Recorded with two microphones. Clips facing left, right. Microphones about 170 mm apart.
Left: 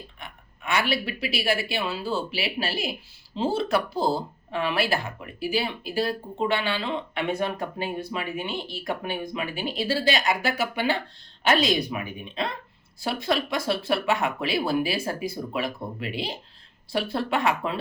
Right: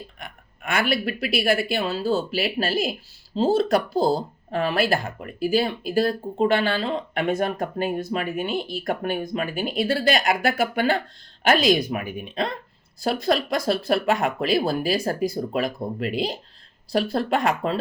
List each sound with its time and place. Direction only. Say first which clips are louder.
0.6 s speech: right 2 dB; 50° right (ahead or behind)
13.1 s speech: right 4 dB; 40° right (ahead or behind)